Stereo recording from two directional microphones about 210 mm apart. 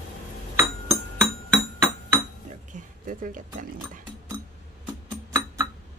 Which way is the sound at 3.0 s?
40° right (ahead or behind).